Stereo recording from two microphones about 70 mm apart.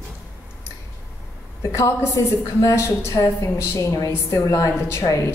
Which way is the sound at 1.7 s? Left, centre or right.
Left.